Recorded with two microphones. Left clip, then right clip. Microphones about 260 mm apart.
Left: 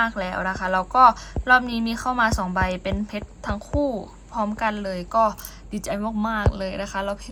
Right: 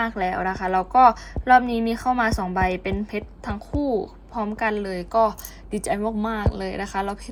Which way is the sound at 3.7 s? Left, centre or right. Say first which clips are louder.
Even; left.